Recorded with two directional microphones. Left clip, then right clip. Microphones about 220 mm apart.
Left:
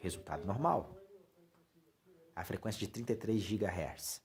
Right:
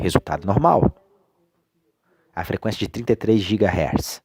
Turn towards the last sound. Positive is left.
turn(degrees=-40)  # may be behind; listen again after turning